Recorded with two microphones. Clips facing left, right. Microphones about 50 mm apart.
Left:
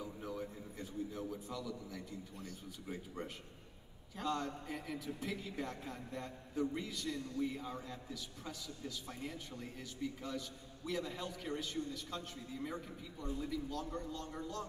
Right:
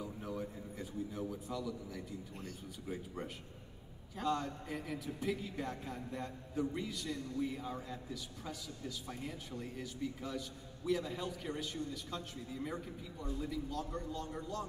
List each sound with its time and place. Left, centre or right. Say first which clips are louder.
0.0 s a sound: right 2 dB; centre
2.9 s speech: right 3 dB; centre
4.2 s a man's voice: right 2 dB; centre